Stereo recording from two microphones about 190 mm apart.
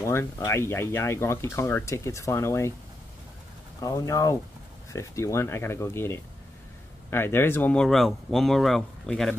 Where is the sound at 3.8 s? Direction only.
15° left (ahead or behind).